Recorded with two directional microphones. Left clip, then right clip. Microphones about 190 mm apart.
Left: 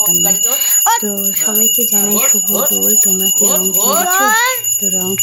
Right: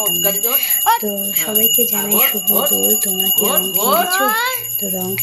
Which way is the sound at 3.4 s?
10° right (ahead or behind).